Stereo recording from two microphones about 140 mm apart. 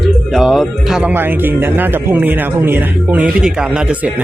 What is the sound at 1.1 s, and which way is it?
A man's voice, 15° right (ahead or behind).